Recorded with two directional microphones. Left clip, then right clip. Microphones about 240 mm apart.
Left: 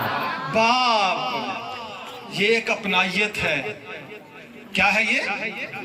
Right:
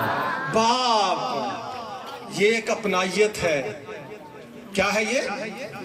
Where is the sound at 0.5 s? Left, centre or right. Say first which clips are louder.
Left 2 dB; right.